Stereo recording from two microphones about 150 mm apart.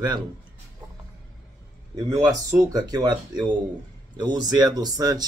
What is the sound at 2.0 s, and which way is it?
Speech, 20° right (ahead or behind).